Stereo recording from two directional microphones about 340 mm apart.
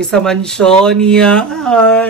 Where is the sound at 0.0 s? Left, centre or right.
Centre.